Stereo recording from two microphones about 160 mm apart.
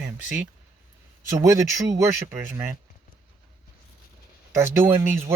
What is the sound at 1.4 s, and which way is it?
Speech, 20° right (ahead or behind).